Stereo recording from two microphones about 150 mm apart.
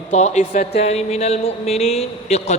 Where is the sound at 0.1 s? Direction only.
50° left (ahead or behind).